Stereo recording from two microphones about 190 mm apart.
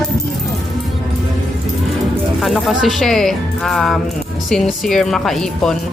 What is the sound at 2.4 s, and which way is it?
Speech, centre (ahead or behind).